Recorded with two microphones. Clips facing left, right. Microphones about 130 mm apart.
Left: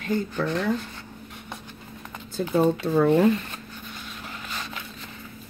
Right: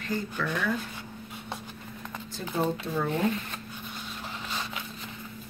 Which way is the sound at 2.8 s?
60° left (ahead or behind).